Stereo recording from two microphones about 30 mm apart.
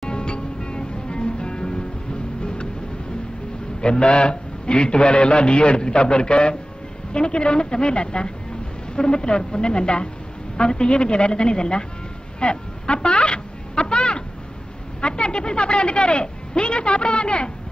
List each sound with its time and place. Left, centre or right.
0.0 s music: left
3.8 s speech: left
12.4 s a sound: left
15.0 s speech: left